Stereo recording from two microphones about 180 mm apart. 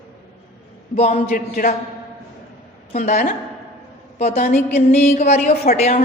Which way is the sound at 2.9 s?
40° left (ahead or behind).